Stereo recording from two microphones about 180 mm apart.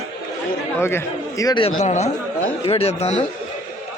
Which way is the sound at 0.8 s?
15° left (ahead or behind).